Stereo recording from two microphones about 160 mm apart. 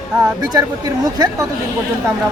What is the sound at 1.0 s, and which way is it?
Speech, 20° right (ahead or behind).